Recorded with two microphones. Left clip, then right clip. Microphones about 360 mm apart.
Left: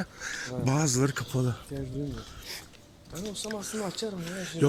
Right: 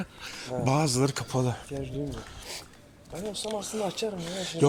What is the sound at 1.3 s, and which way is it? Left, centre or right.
Speech, right.